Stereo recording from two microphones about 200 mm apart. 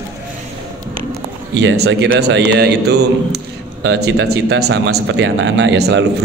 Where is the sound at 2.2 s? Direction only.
60° right (ahead or behind).